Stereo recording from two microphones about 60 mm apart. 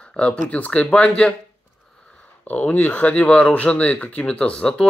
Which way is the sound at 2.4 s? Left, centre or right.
Left.